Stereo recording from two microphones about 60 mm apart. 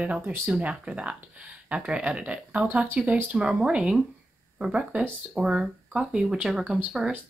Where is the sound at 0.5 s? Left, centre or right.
Centre.